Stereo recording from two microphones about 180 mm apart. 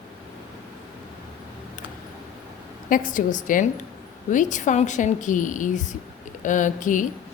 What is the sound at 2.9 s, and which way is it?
A woman's voice, 45° left (ahead or behind).